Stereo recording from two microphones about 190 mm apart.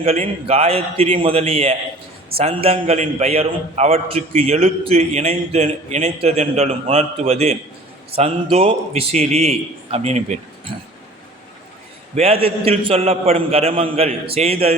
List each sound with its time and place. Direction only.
0.0 s a man's voice: 30° right (ahead or behind)
12.1 s a man's voice: 30° right (ahead or behind)